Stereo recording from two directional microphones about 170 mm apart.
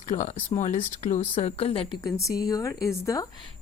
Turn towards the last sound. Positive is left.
turn(degrees=20)  # may be behind; listen again after turning